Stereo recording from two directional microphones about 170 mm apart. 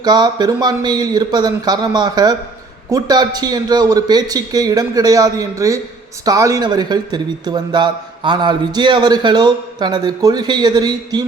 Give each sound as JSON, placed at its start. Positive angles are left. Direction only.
{"t": 0.0, "sound": "a man's voice", "side_deg": -25}